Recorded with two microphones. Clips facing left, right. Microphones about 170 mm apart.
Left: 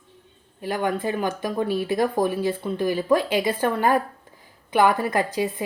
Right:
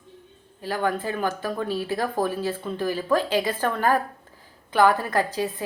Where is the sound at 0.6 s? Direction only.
15° left (ahead or behind).